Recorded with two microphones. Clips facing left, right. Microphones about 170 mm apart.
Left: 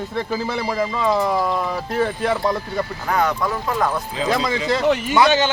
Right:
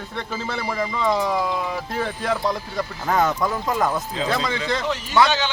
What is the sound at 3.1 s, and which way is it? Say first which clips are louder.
Speech: even; 20° right (ahead or behind).